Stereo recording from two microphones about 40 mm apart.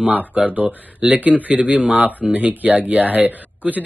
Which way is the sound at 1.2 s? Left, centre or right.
Right.